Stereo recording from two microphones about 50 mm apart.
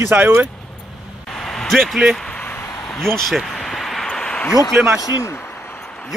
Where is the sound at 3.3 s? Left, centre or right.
Centre.